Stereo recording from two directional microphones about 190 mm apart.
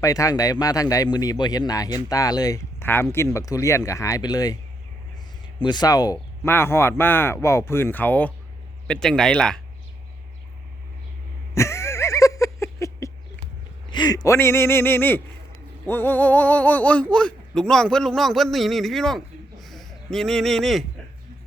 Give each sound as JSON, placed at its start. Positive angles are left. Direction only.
{"t": 0.0, "sound": "speech", "side_deg": 15}
{"t": 5.5, "sound": "speech", "side_deg": 25}
{"t": 11.5, "sound": "a sound", "side_deg": 15}
{"t": 13.9, "sound": "speech", "side_deg": 20}